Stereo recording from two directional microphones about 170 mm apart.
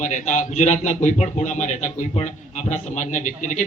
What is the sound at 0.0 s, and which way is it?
A man's voice, 45° left (ahead or behind).